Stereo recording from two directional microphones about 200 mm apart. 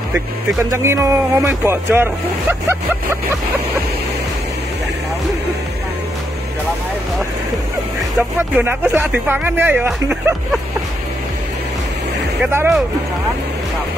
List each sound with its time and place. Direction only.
0.7 s speech: 15° right (ahead or behind)
8.2 s speech: 10° right (ahead or behind)
12.4 s speech: 10° right (ahead or behind)